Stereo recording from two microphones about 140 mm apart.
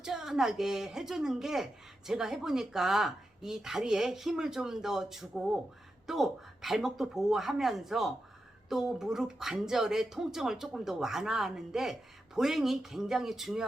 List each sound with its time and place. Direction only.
0.0 s speech: 5° right (ahead or behind)